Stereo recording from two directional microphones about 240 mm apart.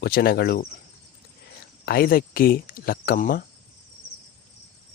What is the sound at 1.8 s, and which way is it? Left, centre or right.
Speech, left.